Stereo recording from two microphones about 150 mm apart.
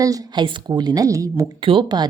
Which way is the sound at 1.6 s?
35° right (ahead or behind).